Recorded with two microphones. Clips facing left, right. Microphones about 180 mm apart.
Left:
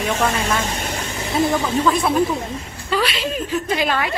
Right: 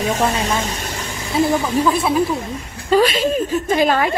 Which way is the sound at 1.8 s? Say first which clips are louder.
Even; 5° right (ahead or behind).